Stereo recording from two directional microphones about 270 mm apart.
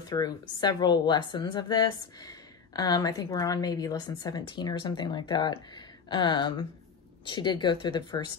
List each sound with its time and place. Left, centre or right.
0.1 s a woman's voice: centre